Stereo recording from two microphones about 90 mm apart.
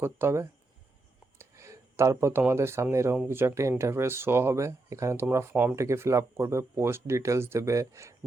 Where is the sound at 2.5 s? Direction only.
30° right (ahead or behind).